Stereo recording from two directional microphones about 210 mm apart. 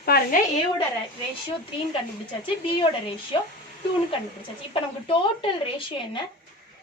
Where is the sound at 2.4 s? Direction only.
25° left (ahead or behind).